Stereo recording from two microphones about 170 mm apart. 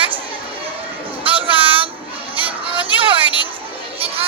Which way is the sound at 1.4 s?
30° right (ahead or behind).